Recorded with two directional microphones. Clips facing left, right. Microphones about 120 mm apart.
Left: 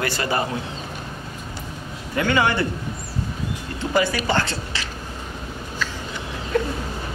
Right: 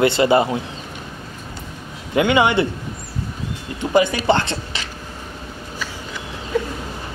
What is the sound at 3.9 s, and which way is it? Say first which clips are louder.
Speech: right 5 dB; 20° right (ahead or behind).